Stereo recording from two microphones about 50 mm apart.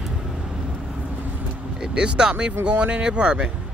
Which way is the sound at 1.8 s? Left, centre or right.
Centre.